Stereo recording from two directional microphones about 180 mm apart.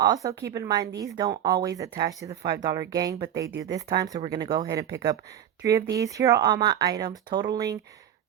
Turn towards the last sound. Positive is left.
turn(degrees=-20)  # may be behind; listen again after turning